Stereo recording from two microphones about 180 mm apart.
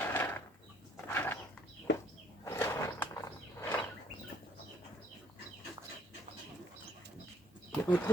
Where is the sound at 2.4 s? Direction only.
15° left (ahead or behind).